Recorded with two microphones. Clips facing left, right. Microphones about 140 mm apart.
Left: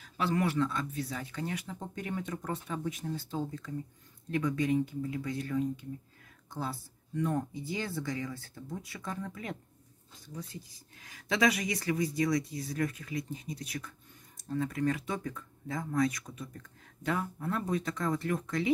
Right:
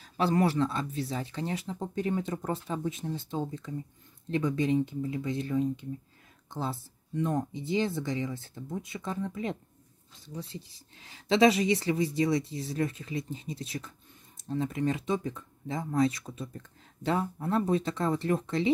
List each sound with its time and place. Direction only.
0.0 s speech: 35° right (ahead or behind)